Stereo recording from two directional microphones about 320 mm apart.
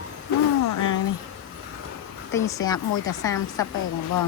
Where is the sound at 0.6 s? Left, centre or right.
Left.